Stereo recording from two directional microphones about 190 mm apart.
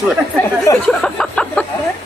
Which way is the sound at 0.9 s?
5° left (ahead or behind).